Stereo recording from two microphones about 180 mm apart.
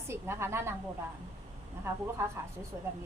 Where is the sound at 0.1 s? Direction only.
15° right (ahead or behind).